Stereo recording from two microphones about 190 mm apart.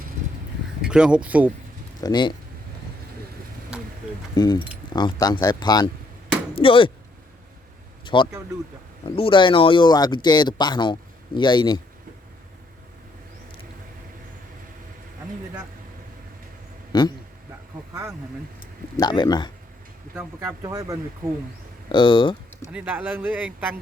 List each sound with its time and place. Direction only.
0.8 s speech: 5° right (ahead or behind)
2.0 s speech: 20° left (ahead or behind)
3.7 s a sound: 5° right (ahead or behind)
4.4 s speech: 20° left (ahead or behind)
8.0 s a sound: 25° left (ahead or behind)
9.0 s speech: 30° left (ahead or behind)
16.9 s speech: 25° left (ahead or behind)
18.9 s speech: 20° left (ahead or behind)
20.1 s speech: 15° right (ahead or behind)
21.9 s speech: 25° left (ahead or behind)
22.7 s speech: 10° right (ahead or behind)